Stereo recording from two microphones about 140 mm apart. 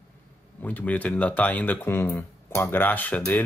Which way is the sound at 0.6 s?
10° left (ahead or behind).